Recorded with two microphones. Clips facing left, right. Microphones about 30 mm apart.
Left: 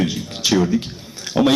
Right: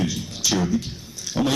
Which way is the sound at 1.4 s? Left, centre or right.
Left.